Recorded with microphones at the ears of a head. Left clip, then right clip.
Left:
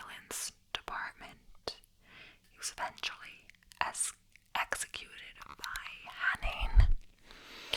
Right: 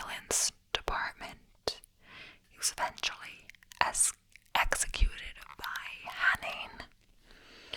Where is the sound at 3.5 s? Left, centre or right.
Right.